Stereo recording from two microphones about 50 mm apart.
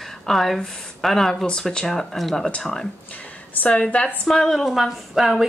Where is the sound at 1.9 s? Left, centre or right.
Centre; by 4.1 s left.